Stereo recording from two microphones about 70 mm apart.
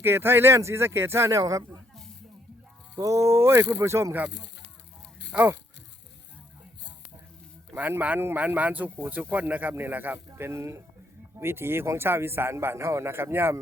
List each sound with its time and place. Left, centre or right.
0.0 s a man's voice: right
1.4 s speech: right
3.0 s a man's voice: right
5.3 s speech: centre
7.8 s a man's voice: right